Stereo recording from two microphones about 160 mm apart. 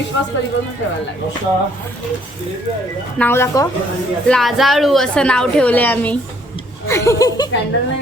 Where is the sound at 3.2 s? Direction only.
15° left (ahead or behind).